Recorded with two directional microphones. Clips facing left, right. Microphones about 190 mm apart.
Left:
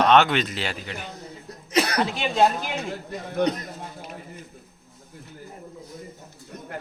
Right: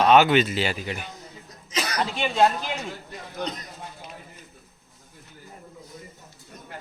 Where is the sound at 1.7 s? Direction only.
60° left (ahead or behind).